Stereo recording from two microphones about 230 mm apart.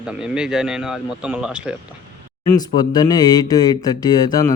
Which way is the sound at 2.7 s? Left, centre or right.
Centre.